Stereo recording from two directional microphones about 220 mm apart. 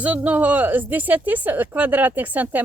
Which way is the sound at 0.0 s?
5° right (ahead or behind).